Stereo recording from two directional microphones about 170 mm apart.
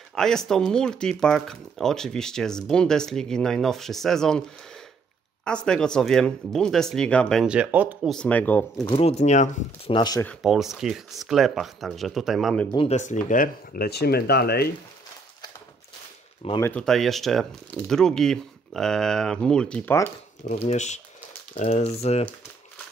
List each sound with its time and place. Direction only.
0.1 s speech: 5° left (ahead or behind)
8.1 s speech: 5° left (ahead or behind)
8.9 s speech: 40° left (ahead or behind)
9.9 s speech: 25° left (ahead or behind)
10.2 s speech: centre (ahead or behind)
12.7 s speech: 40° left (ahead or behind); by 14.7 s 65° left (ahead or behind)
16.6 s speech: 5° left (ahead or behind)
20.4 s speech: 40° left (ahead or behind)